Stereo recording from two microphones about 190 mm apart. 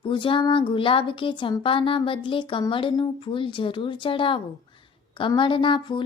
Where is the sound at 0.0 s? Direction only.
25° left (ahead or behind).